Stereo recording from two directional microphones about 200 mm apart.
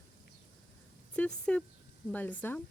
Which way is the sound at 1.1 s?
5° left (ahead or behind).